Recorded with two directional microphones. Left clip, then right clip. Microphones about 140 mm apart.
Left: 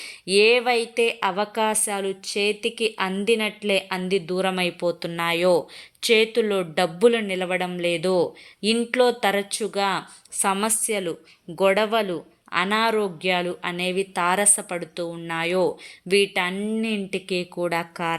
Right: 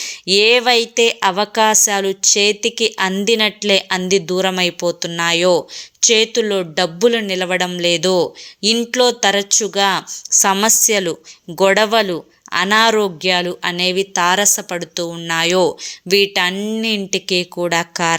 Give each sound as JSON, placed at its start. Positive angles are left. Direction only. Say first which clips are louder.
{"t": 0.0, "sound": "speech", "louder": "right 5 dB", "side_deg": -20}